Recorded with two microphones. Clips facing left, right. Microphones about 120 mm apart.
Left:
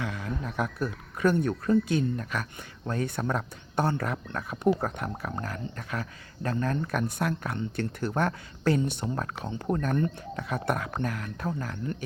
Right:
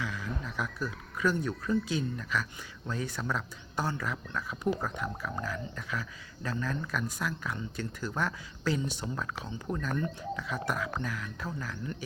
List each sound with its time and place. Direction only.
0.0 s music: 55° left (ahead or behind)
0.6 s speech: 55° left (ahead or behind)